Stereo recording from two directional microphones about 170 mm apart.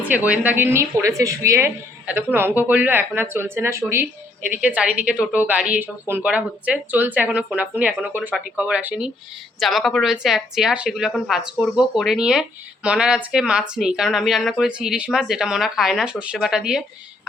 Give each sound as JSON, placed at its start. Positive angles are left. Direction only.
{"t": 0.1, "sound": "a woman's voice", "side_deg": -10}